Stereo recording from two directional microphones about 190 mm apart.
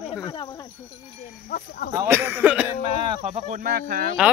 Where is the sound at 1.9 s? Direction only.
10° right (ahead or behind).